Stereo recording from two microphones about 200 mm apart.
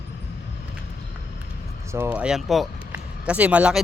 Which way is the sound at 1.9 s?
10° right (ahead or behind).